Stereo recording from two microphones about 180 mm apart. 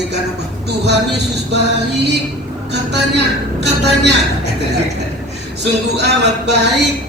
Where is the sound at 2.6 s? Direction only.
70° right (ahead or behind).